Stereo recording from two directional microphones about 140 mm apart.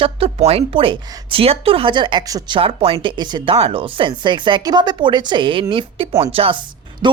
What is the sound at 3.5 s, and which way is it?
Speech, 40° right (ahead or behind).